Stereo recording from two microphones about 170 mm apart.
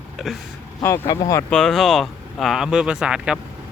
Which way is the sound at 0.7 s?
15° left (ahead or behind).